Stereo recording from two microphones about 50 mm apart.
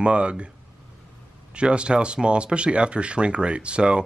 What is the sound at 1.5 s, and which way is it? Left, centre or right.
Speech, right.